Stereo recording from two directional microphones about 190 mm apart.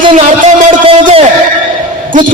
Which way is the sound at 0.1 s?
40° right (ahead or behind).